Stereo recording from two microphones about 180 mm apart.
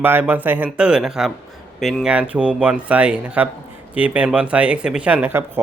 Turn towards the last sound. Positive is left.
turn(degrees=-10)  # may be behind; listen again after turning